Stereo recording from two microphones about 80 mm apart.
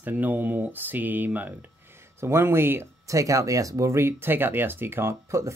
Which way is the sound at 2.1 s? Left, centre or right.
Right.